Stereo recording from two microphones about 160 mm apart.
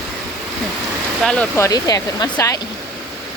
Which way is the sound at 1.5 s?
20° left (ahead or behind).